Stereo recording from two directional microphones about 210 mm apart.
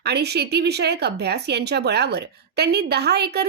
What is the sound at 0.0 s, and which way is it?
Speech, 50° right (ahead or behind).